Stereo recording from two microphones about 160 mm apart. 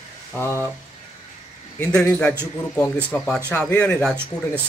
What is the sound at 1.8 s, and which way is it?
Speech, 10° left (ahead or behind).